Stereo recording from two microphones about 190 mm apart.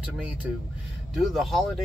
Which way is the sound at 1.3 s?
Centre (ahead or behind).